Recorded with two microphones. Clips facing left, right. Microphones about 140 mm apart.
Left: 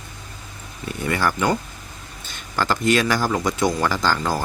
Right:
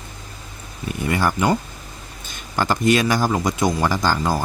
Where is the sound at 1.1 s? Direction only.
15° right (ahead or behind).